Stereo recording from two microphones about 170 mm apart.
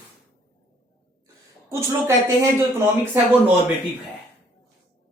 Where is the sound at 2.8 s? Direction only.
15° right (ahead or behind).